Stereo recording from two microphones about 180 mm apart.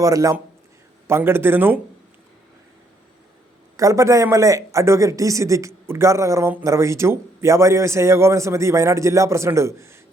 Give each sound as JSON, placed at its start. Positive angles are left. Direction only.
{"t": 0.0, "sound": "speech", "side_deg": -20}
{"t": 3.8, "sound": "speech", "side_deg": -15}